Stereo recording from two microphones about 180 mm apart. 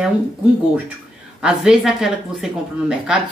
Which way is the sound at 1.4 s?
5° right (ahead or behind).